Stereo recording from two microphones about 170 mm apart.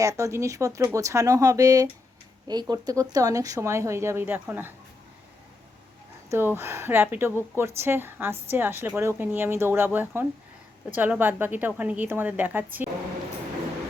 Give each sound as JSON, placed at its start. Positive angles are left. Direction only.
{"t": 0.0, "sound": "speech", "side_deg": -20}
{"t": 6.3, "sound": "a woman's voice", "side_deg": -15}